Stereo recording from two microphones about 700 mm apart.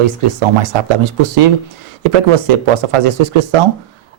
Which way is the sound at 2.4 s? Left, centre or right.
Right.